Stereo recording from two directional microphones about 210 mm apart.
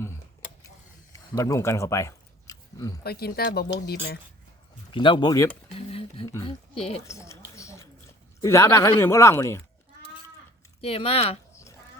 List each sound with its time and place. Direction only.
1.1 s chewing: 15° left (ahead or behind)
3.0 s speech: 50° left (ahead or behind)
4.9 s speech: 25° left (ahead or behind)
5.7 s a sound: 25° left (ahead or behind)
6.2 s speech: 15° left (ahead or behind)
6.7 s speech: 30° left (ahead or behind)
7.0 s a sound: 15° left (ahead or behind)
8.4 s speech: 15° left (ahead or behind)
10.8 s speech: 25° left (ahead or behind)
11.5 s a sound: 15° left (ahead or behind)